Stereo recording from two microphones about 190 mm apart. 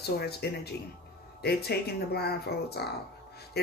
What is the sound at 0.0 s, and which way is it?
Speech, 55° left (ahead or behind).